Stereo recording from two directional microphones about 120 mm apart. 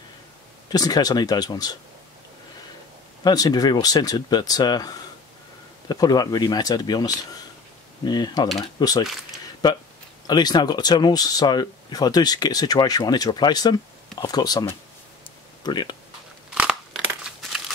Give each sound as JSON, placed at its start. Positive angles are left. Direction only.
{"t": 0.7, "sound": "speech", "side_deg": 30}
{"t": 3.3, "sound": "speech", "side_deg": 30}
{"t": 10.2, "sound": "speech", "side_deg": 35}
{"t": 16.5, "sound": "crumpling", "side_deg": -5}